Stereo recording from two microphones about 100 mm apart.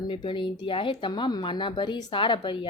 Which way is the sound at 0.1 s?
55° left (ahead or behind).